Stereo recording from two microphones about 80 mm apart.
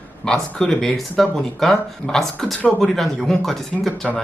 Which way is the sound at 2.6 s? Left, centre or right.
Centre.